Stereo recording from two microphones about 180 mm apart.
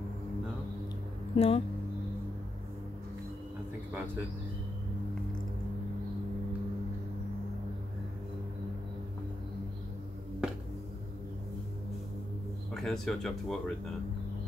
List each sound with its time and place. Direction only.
1.3 s speech: 35° left (ahead or behind)
12.7 s speech: centre (ahead or behind)